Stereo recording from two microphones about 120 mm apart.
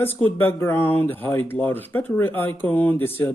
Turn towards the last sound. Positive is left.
turn(degrees=15)  # may be behind; listen again after turning